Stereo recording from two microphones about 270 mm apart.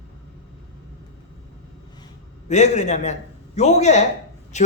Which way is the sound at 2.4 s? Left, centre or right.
Left.